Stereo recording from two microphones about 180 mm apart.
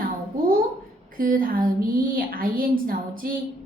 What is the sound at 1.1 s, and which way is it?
A woman's voice, 50° right (ahead or behind).